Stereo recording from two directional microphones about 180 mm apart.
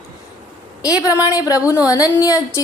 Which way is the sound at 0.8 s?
20° left (ahead or behind).